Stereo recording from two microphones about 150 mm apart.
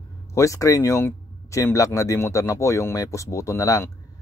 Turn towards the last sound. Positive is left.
turn(degrees=20)  # may be behind; listen again after turning